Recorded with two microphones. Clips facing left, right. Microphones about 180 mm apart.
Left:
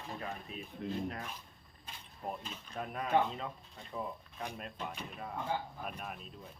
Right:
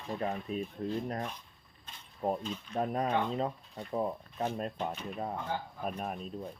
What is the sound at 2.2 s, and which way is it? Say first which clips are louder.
Speech: right 9 dB; 45° right (ahead or behind).